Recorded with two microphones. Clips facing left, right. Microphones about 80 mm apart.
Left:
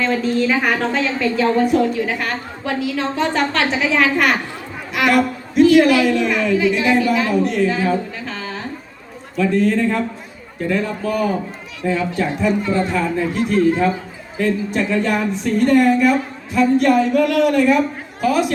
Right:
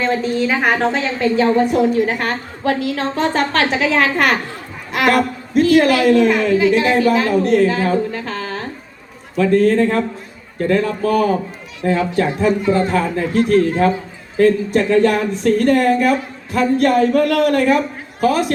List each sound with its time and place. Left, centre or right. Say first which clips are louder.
0.0 s a woman's voice: even; right
1.9 s a woman's voice: right 4 dB; right